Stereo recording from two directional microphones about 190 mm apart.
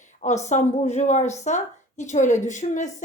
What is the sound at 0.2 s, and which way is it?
Speech, 35° left (ahead or behind).